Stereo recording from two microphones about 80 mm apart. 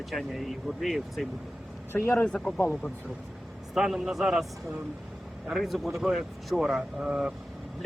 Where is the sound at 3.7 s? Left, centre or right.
Centre.